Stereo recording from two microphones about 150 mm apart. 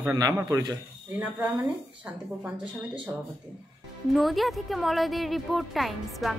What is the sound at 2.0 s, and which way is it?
Speech, 10° right (ahead or behind).